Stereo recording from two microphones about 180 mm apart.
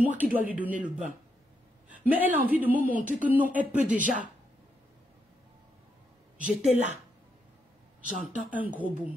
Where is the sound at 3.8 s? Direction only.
45° right (ahead or behind).